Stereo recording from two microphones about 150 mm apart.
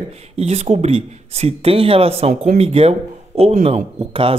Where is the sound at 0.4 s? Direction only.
45° right (ahead or behind).